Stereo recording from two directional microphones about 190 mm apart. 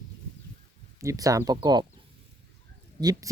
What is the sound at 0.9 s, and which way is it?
Speech, 15° right (ahead or behind).